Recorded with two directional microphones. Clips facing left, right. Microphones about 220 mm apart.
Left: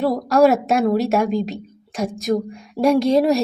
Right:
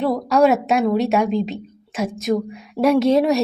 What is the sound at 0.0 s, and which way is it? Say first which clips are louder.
A woman's voice: left 1 dB; centre (ahead or behind).